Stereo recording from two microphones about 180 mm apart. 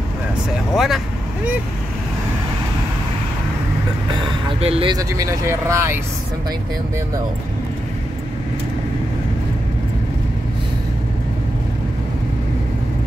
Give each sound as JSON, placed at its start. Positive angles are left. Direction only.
{"t": 0.7, "sound": "speech", "side_deg": 0}
{"t": 4.1, "sound": "vehicle", "side_deg": -25}
{"t": 4.9, "sound": "speech", "side_deg": -20}